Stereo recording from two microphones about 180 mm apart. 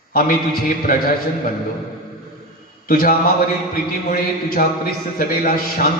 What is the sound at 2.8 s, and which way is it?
A man's voice, 50° left (ahead or behind).